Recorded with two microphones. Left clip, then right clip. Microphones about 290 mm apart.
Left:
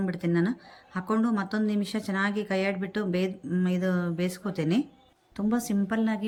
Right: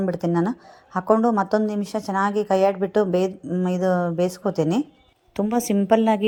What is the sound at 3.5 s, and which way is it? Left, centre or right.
Speech, centre.